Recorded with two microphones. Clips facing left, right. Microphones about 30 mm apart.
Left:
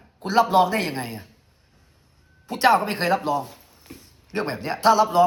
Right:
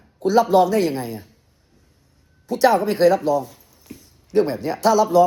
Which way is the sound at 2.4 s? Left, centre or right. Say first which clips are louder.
Right 2 dB; left.